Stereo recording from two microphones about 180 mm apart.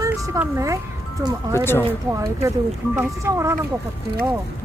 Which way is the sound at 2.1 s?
15° right (ahead or behind).